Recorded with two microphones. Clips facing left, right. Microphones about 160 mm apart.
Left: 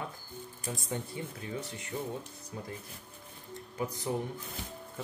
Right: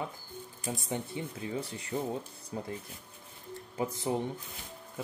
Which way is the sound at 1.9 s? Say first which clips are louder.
Right 4 dB; 40° right (ahead or behind).